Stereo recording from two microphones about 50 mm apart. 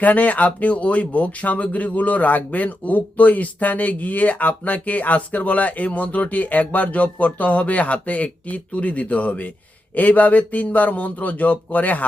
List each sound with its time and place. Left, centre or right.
0.0 s speech: left